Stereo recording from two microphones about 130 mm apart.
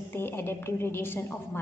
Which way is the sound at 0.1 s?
20° left (ahead or behind).